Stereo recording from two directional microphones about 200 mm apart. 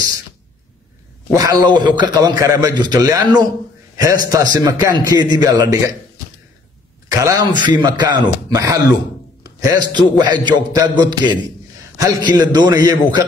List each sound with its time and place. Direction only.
1.3 s a man's voice: 20° right (ahead or behind)
7.1 s a man's voice: 15° right (ahead or behind)